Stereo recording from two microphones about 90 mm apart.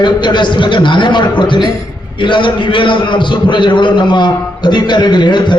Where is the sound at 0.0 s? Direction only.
60° left (ahead or behind).